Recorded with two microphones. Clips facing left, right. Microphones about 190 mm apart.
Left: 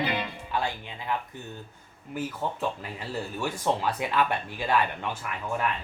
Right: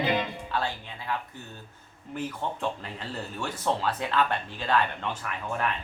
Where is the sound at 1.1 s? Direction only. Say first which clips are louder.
Left 2 dB; 15° left (ahead or behind).